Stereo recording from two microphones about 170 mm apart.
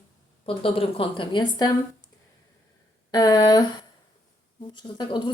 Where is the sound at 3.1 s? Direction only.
25° left (ahead or behind).